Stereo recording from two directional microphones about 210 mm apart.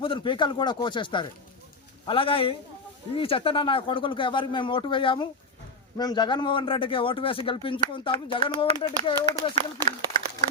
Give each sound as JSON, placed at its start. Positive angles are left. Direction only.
{"t": 0.0, "sound": "a man's voice", "side_deg": 25}